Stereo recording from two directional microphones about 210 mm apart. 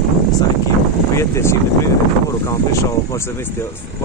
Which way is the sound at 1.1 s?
15° left (ahead or behind).